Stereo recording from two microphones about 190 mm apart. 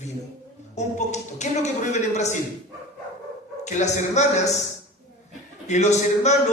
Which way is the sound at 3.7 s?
40° left (ahead or behind).